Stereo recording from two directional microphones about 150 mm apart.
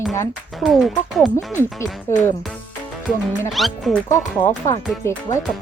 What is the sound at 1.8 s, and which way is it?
Speech, 15° left (ahead or behind).